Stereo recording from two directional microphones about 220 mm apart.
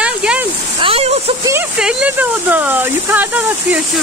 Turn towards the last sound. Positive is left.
turn(degrees=-10)  # may be behind; listen again after turning